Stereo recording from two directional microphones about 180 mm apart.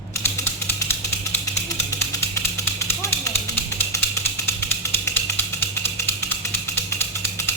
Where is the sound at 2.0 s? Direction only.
15° left (ahead or behind).